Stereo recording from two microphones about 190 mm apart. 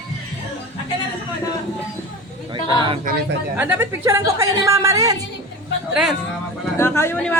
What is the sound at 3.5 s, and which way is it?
A woman's voice, 10° right (ahead or behind).